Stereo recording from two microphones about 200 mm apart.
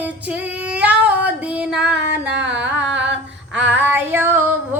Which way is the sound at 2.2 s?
60° right (ahead or behind).